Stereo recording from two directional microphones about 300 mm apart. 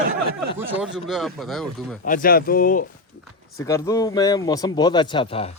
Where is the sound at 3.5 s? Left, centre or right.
Centre.